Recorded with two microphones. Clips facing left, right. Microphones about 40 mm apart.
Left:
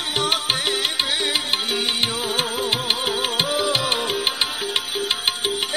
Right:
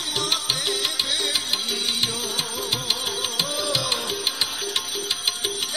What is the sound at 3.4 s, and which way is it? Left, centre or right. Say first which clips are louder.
Music: left 3 dB; left.